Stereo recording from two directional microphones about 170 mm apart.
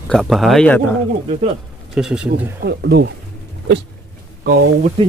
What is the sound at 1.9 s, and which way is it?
Speech, 5° right (ahead or behind).